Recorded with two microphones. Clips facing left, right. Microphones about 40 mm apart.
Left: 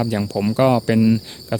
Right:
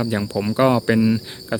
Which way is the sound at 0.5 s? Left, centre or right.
Centre.